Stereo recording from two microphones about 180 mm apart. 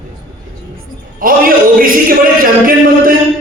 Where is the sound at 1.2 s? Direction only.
50° right (ahead or behind).